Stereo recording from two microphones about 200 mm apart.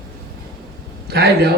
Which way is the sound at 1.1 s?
55° right (ahead or behind).